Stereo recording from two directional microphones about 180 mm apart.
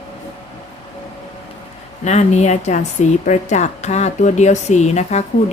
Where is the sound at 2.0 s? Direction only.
40° left (ahead or behind).